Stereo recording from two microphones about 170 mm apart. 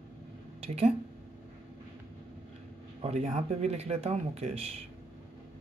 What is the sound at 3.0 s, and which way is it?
Speech, 40° right (ahead or behind).